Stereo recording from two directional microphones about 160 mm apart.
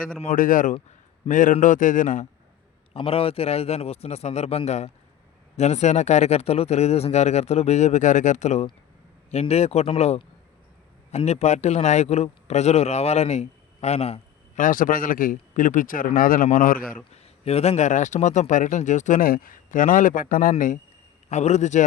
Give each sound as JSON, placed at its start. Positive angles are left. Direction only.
{"t": 0.3, "sound": "speech", "side_deg": 60}
{"t": 2.9, "sound": "a man's voice", "side_deg": 35}
{"t": 14.6, "sound": "speech", "side_deg": 60}
{"t": 17.1, "sound": "speech", "side_deg": 40}
{"t": 21.2, "sound": "speech", "side_deg": 45}